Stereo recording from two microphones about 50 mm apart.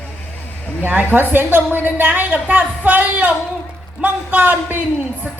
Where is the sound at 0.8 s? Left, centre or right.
Right.